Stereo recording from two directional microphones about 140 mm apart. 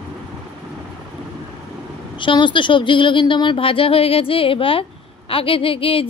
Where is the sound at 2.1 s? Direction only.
35° left (ahead or behind).